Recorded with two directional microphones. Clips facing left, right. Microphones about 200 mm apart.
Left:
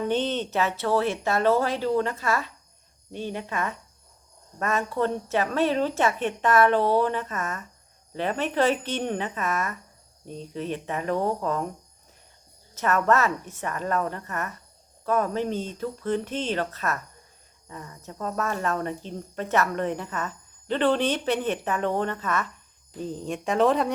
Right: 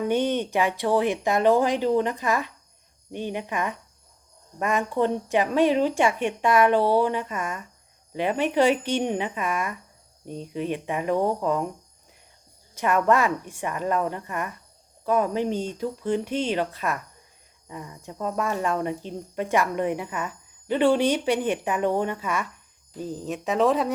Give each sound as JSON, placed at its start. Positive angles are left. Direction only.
{"t": 0.0, "sound": "speech", "side_deg": -10}
{"t": 12.7, "sound": "speech", "side_deg": -15}